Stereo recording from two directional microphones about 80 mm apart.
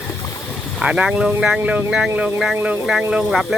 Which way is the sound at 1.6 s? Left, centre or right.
Right.